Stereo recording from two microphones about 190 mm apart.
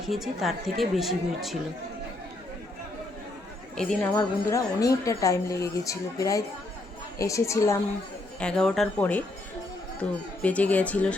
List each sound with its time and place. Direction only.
0.0 s speech: centre (ahead or behind)
3.8 s speech: 5° left (ahead or behind)
8.4 s speech: 5° left (ahead or behind)